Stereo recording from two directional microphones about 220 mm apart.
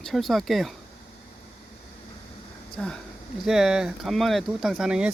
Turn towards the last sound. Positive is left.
turn(degrees=-5)  # may be behind; listen again after turning